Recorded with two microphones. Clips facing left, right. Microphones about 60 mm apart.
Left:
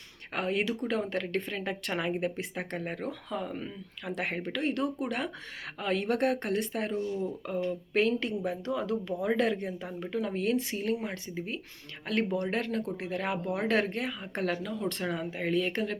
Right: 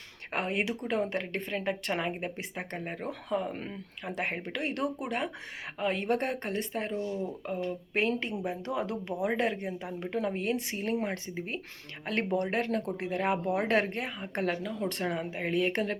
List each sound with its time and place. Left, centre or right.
0.3 s speech: right
1.5 s speech: centre
3.1 s speech: right
4.9 s speech: centre
15.7 s speech: right